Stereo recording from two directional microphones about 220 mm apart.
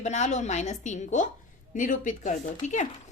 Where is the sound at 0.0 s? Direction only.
30° left (ahead or behind).